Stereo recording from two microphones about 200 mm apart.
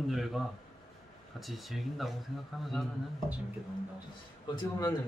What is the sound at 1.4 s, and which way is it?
Speech, centre (ahead or behind).